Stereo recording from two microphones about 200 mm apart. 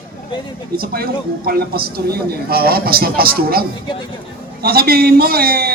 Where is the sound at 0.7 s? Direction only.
50° right (ahead or behind).